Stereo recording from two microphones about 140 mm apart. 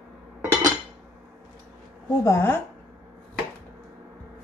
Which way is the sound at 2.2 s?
20° left (ahead or behind).